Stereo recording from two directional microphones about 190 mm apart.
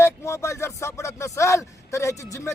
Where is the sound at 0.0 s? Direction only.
15° left (ahead or behind).